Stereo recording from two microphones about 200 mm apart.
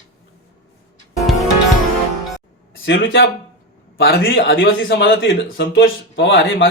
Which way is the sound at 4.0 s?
50° left (ahead or behind).